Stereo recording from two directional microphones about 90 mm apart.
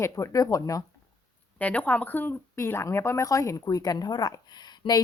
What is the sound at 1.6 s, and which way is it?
A woman's voice, 15° left (ahead or behind).